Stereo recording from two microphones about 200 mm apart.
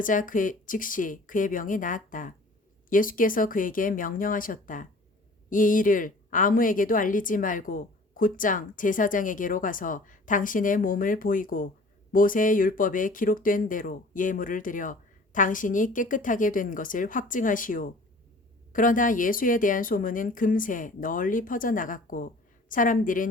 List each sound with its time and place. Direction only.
0.0 s a woman's voice: 40° left (ahead or behind)